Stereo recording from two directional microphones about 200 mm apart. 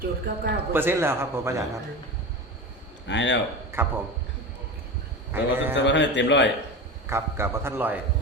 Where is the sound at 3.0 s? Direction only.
65° left (ahead or behind).